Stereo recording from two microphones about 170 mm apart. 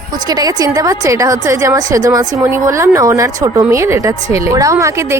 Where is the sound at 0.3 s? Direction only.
20° right (ahead or behind).